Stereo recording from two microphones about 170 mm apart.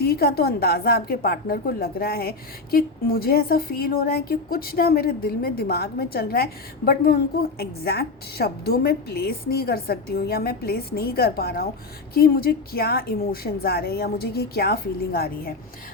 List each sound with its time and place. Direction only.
0.0 s speech: 65° left (ahead or behind)